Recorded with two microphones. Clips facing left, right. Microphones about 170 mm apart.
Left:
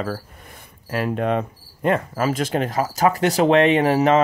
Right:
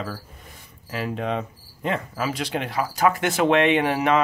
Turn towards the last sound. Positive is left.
turn(degrees=40)  # may be behind; listen again after turning